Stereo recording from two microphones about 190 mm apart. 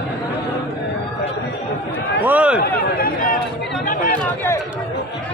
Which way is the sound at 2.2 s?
5° right (ahead or behind).